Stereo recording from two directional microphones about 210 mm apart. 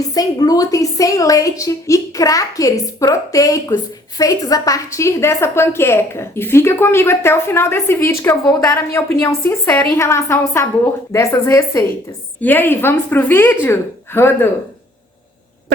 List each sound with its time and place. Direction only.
0.1 s a woman's voice: 20° left (ahead or behind)